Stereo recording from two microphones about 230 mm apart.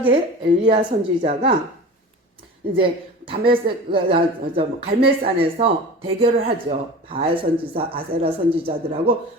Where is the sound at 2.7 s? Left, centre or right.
Right.